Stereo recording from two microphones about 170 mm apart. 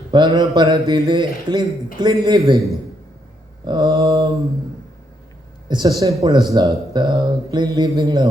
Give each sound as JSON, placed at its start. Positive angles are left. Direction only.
{"t": 0.1, "sound": "speech", "side_deg": -25}
{"t": 5.6, "sound": "speech", "side_deg": -25}